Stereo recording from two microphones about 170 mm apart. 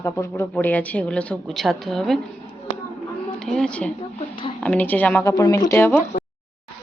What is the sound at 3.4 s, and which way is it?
Speech, 5° left (ahead or behind).